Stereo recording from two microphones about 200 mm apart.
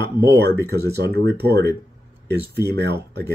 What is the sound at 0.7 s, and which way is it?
Speech, 55° right (ahead or behind).